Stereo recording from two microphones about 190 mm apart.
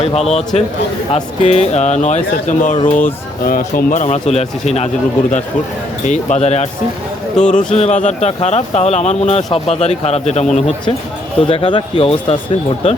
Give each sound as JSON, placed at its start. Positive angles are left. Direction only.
{"t": 0.0, "sound": "speech", "side_deg": 35}
{"t": 6.1, "sound": "speech", "side_deg": 40}
{"t": 7.4, "sound": "speech", "side_deg": 5}
{"t": 7.7, "sound": "speech", "side_deg": 40}